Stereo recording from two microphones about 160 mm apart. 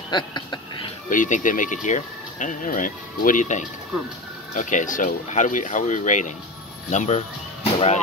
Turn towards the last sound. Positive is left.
turn(degrees=40)  # may be behind; listen again after turning